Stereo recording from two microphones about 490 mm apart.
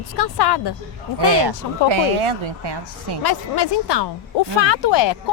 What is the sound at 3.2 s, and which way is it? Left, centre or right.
Speech, left.